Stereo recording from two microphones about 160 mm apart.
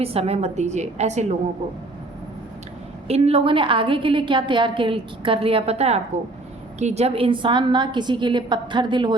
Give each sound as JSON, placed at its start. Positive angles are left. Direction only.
{"t": 0.0, "sound": "a woman's voice", "side_deg": -40}
{"t": 3.1, "sound": "a woman's voice", "side_deg": -40}